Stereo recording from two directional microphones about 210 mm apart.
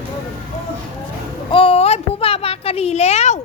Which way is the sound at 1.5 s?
25° left (ahead or behind).